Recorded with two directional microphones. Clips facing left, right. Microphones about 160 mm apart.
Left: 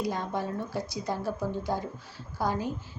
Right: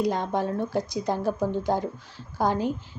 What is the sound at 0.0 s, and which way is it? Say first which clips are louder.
Speech: right 6 dB; 20° right (ahead or behind).